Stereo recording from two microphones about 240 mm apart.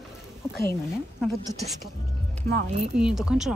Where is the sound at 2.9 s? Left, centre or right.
Centre.